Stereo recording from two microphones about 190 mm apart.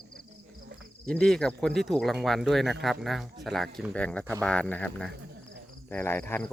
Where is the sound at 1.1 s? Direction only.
5° left (ahead or behind).